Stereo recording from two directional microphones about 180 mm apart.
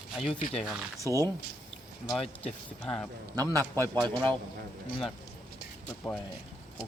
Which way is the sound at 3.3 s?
20° right (ahead or behind).